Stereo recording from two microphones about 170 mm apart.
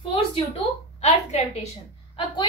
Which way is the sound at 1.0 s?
35° left (ahead or behind).